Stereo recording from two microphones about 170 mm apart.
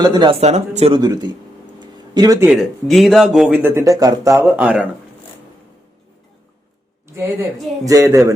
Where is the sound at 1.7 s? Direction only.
25° right (ahead or behind).